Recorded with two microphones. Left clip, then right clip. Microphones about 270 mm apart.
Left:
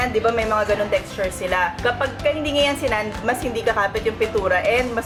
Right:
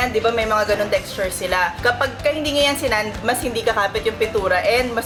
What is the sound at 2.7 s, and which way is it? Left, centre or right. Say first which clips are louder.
Speech: right 2 dB; centre.